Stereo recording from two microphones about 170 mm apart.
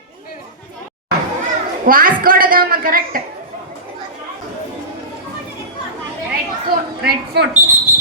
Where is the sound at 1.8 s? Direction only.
55° right (ahead or behind).